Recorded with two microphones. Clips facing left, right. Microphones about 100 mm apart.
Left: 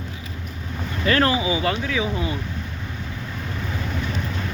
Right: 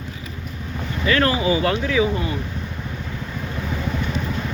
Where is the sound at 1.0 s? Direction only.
35° left (ahead or behind).